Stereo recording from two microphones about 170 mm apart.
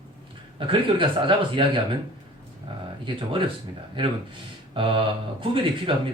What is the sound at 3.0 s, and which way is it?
Speech, 30° right (ahead or behind).